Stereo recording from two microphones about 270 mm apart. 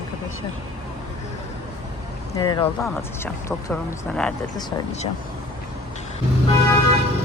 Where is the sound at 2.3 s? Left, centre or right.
Centre.